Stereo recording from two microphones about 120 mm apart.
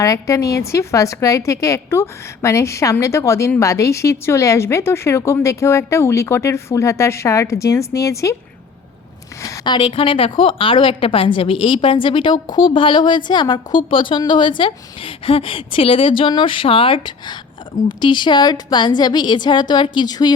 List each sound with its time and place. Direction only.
0.0 s a woman's voice: 25° left (ahead or behind)
9.4 s a woman's voice: 35° left (ahead or behind)